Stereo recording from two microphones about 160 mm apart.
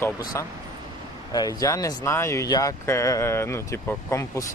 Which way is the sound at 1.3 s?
20° left (ahead or behind).